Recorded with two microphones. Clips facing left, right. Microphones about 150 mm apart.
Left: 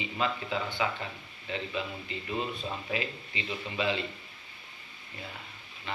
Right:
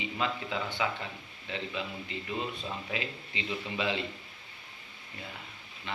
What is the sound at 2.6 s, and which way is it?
Speech, 20° right (ahead or behind).